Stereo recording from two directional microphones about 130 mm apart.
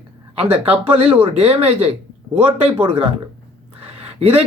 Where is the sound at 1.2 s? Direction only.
50° right (ahead or behind).